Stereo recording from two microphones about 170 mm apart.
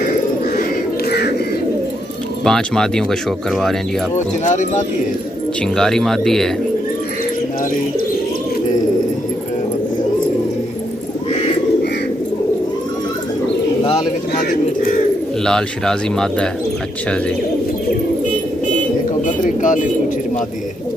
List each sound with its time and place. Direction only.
2.4 s speech: 5° left (ahead or behind)
4.5 s speech: 45° left (ahead or behind)
5.6 s speech: 5° left (ahead or behind)
13.8 s bird: 45° left (ahead or behind)
15.4 s speech: 5° left (ahead or behind)
19.2 s bird: 50° left (ahead or behind)